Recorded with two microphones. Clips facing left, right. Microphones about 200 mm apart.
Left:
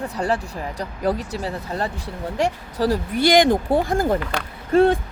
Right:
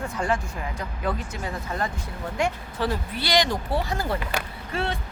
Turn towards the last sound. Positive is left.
turn(degrees=50)  # may be behind; listen again after turning